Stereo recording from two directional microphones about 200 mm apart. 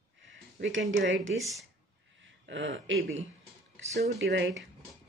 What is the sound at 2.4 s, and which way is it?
Speech, 70° right (ahead or behind).